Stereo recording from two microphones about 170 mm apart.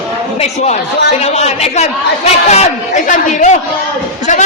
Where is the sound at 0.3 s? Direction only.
40° left (ahead or behind).